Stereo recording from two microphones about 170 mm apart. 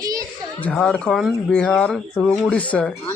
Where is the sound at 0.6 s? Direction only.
5° left (ahead or behind).